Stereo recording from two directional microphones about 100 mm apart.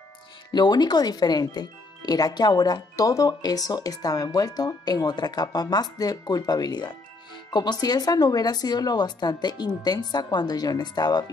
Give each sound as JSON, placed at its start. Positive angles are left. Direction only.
{"t": 0.5, "sound": "speech", "side_deg": 45}